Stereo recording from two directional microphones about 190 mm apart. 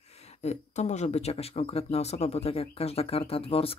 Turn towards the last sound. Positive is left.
turn(degrees=30)  # may be behind; listen again after turning